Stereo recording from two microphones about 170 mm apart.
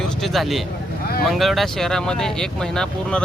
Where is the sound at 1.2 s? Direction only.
Centre (ahead or behind).